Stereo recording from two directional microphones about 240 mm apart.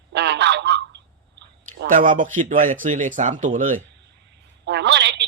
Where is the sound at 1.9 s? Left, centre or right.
Right.